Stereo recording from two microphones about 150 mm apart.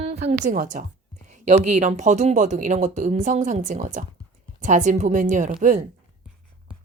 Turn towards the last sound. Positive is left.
turn(degrees=-55)  # may be behind; listen again after turning